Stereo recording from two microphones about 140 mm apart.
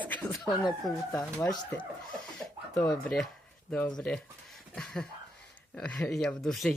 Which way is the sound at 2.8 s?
15° left (ahead or behind).